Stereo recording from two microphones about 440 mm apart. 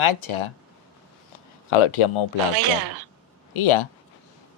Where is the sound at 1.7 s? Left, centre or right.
Left.